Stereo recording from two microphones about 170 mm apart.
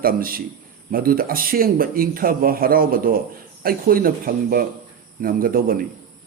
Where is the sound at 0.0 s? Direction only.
60° right (ahead or behind).